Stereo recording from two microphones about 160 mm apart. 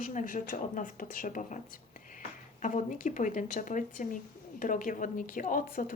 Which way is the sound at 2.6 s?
50° left (ahead or behind).